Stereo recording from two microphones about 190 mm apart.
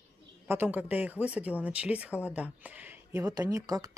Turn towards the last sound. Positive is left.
turn(degrees=-20)  # may be behind; listen again after turning